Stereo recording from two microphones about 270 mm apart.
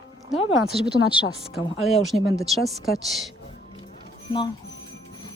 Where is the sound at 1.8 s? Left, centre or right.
Centre.